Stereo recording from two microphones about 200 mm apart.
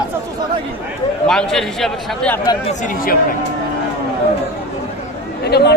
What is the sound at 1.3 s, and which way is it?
A man's voice, centre (ahead or behind).